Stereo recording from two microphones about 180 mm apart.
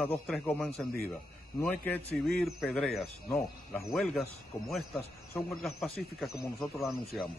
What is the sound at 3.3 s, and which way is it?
Speech, 15° left (ahead or behind).